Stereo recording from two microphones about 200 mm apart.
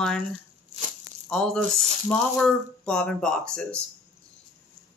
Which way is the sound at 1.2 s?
5° left (ahead or behind).